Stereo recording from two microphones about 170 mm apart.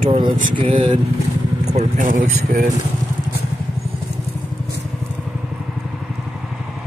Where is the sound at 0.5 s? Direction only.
30° right (ahead or behind).